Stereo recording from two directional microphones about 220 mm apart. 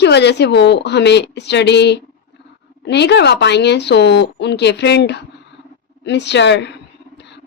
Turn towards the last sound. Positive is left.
turn(degrees=55)  # may be behind; listen again after turning